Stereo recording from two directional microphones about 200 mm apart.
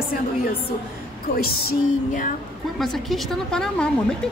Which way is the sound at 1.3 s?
45° left (ahead or behind).